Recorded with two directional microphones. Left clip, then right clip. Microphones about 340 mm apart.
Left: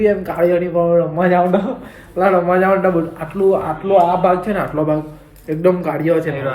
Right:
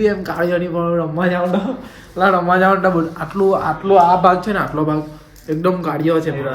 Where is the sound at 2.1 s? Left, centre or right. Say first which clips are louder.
Even; centre.